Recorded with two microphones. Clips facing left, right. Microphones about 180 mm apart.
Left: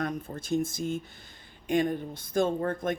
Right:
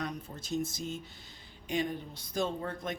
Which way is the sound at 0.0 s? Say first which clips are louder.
Left 6 dB; 50° left (ahead or behind).